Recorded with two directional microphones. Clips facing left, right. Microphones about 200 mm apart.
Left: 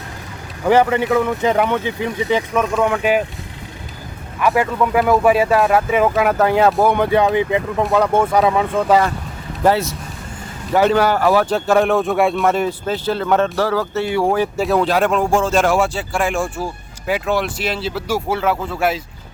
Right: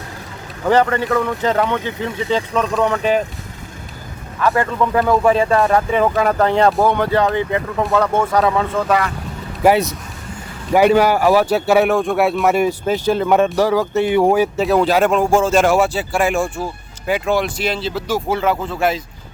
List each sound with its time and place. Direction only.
0.6 s speech: 10° left (ahead or behind)
4.4 s speech: 15° left (ahead or behind)
6.9 s speech: 15° left (ahead or behind)
9.6 s speech: 15° right (ahead or behind)
14.6 s speech: centre (ahead or behind)